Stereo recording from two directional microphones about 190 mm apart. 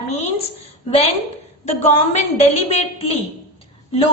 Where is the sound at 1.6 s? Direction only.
35° left (ahead or behind).